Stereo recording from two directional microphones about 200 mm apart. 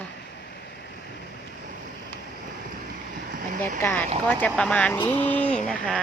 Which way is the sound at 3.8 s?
10° left (ahead or behind).